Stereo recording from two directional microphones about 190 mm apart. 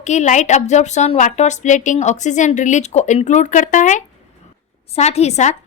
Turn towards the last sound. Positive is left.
turn(degrees=35)  # may be behind; listen again after turning